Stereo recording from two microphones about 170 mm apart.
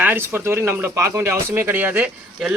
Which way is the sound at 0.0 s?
10° right (ahead or behind).